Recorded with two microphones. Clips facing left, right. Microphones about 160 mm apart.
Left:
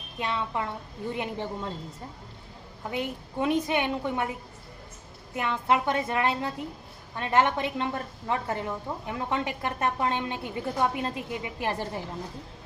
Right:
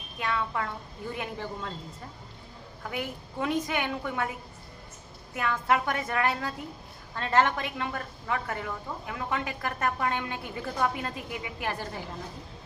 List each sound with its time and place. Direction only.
0.2 s a woman's voice: 25° left (ahead or behind)
2.9 s a woman's voice: 20° left (ahead or behind)
5.3 s a woman's voice: 25° left (ahead or behind)